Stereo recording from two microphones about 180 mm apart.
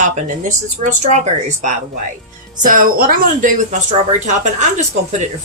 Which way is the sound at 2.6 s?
50° right (ahead or behind).